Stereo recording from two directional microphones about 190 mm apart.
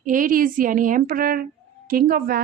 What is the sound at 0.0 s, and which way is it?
A woman's voice, 45° right (ahead or behind).